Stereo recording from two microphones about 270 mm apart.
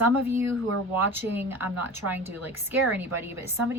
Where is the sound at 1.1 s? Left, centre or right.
Centre.